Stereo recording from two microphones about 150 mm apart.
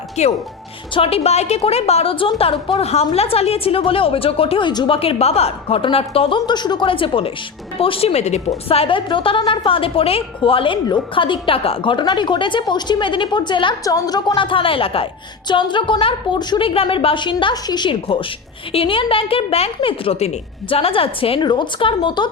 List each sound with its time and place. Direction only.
0.2 s a woman's voice: 50° left (ahead or behind); by 22.3 s 30° left (ahead or behind)